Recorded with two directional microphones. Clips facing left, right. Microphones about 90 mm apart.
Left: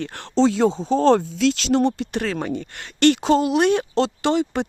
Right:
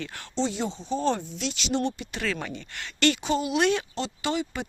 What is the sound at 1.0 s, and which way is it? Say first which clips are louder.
Speech: left 10 dB; 90° left.